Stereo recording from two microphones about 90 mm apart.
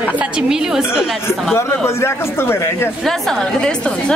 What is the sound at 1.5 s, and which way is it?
Speech, 30° left (ahead or behind).